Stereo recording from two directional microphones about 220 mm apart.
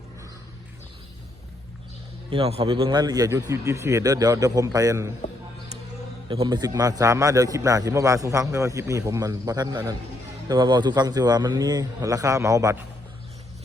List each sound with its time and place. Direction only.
2.3 s a man's voice: 25° right (ahead or behind)
6.2 s a man's voice: 25° right (ahead or behind)